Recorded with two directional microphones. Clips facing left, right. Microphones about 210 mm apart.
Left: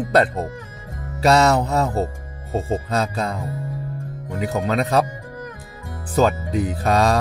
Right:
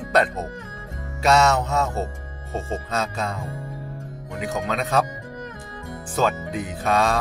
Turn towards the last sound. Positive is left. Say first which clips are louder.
# left 3 dB
turn(degrees=35)  # may be behind; listen again after turning